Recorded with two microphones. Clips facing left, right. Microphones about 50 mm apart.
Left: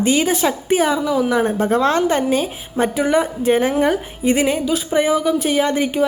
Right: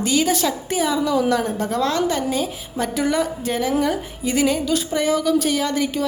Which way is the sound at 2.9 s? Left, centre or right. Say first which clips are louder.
Left 3 dB; centre.